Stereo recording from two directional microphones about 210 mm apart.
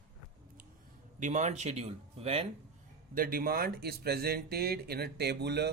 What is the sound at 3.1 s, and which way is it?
Speech, 45° right (ahead or behind).